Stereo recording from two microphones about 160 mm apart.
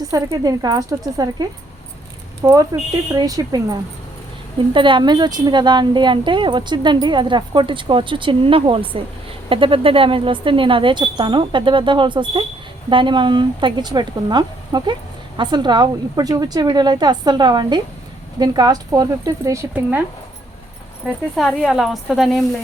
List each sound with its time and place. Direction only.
0.1 s a woman's voice: 25° right (ahead or behind)
21.3 s a woman's voice: centre (ahead or behind)